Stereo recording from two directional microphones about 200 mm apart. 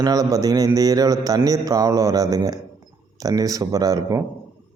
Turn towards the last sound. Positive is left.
turn(degrees=-15)  # may be behind; listen again after turning